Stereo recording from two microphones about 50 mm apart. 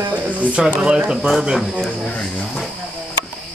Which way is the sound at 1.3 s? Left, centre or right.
Centre.